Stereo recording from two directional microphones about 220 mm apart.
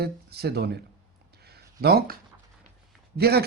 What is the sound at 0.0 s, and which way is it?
Speech, 45° right (ahead or behind).